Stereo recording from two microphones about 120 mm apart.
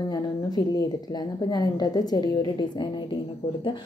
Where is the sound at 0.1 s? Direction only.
35° left (ahead or behind).